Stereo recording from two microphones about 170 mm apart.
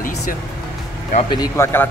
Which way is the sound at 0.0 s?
55° left (ahead or behind).